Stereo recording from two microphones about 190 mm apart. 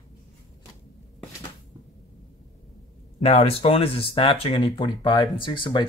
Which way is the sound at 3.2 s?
35° left (ahead or behind).